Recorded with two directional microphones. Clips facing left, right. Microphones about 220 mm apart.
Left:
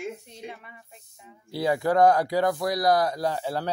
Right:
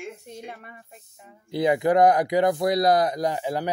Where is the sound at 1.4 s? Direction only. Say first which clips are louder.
Right 3 dB; 20° right (ahead or behind).